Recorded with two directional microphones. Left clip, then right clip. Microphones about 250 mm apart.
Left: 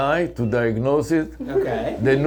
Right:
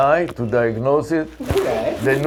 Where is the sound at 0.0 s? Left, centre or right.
Left.